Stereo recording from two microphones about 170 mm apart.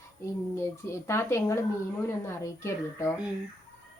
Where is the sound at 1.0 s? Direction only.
15° left (ahead or behind).